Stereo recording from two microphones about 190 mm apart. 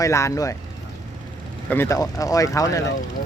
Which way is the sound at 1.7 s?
15° left (ahead or behind).